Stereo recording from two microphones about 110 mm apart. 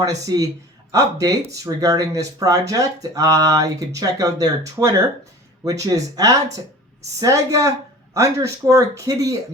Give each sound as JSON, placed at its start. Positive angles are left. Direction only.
{"t": 0.0, "sound": "speech", "side_deg": -35}